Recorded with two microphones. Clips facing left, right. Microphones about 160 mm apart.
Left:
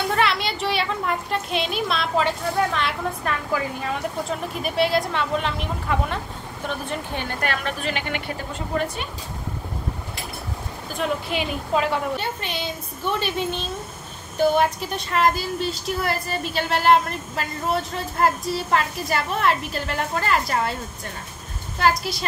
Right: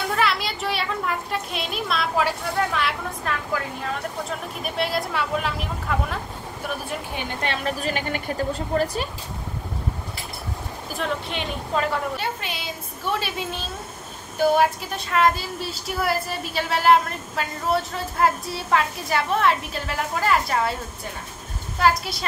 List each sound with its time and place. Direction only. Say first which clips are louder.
0.1 s a sound: left 1 dB; centre (ahead or behind)
4.6 s a woman's voice: left 5 dB; centre (ahead or behind)
7.4 s a woman's voice: right 1 dB; 25° right (ahead or behind)
7.8 s a woman's voice: right 1 dB; 40° right (ahead or behind)
11.0 s a woman's voice: left 3 dB; 5° left (ahead or behind)
14.6 s a woman's voice: right 1 dB; centre (ahead or behind)
21.7 s a woman's voice: even; centre (ahead or behind)